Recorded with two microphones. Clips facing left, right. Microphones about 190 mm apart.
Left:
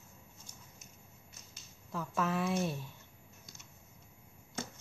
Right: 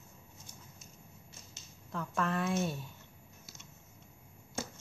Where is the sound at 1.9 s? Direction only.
5° left (ahead or behind).